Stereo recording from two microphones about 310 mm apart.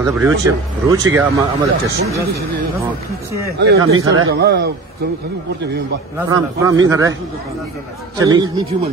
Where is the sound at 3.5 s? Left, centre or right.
Right.